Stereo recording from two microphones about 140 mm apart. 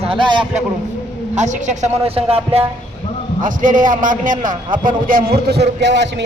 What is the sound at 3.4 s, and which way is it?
A man's voice, 70° right (ahead or behind).